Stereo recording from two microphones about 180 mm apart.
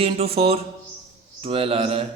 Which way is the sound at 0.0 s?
35° right (ahead or behind).